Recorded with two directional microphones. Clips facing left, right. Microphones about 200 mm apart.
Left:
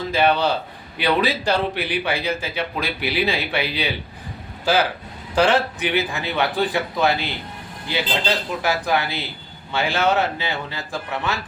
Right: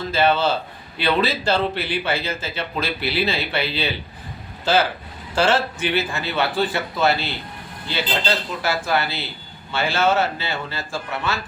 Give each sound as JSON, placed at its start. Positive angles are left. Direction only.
{"t": 0.1, "sound": "speech", "side_deg": 15}